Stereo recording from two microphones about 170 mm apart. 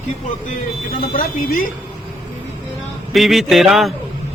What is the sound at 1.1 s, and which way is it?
Speech, 55° left (ahead or behind).